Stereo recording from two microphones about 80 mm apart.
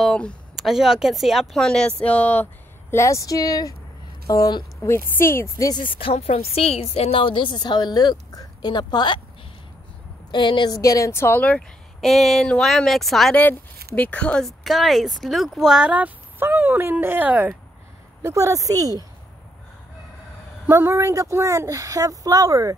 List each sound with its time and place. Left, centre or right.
0.0 s speech: centre
0.6 s speech: centre
2.9 s speech: left
4.8 s a woman's voice: left
7.2 s speech: left
10.3 s a woman's voice: left
10.7 s speech: left
11.1 s speech: left
12.0 s speech: centre
13.3 s speech: left
14.4 s speech: centre; by 17.6 s right
18.2 s speech: right
20.6 s speech: right